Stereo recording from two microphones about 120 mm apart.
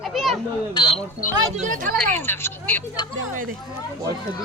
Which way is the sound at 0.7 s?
45° left (ahead or behind).